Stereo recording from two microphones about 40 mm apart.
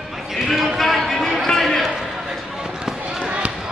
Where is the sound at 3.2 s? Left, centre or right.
Right.